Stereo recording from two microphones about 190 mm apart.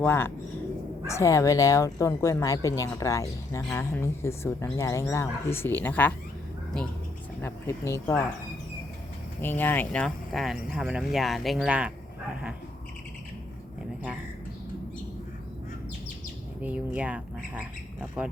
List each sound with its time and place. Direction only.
0.0 s speech: 10° left (ahead or behind)
7.4 s speech: 15° left (ahead or behind)
9.4 s speech: 10° left (ahead or behind); by 11.9 s 5° right (ahead or behind)
16.6 s speech: 10° right (ahead or behind)